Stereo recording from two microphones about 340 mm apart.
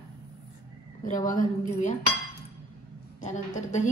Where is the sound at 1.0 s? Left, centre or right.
Left.